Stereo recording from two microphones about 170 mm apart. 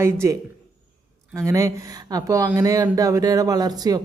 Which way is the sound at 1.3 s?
20° right (ahead or behind).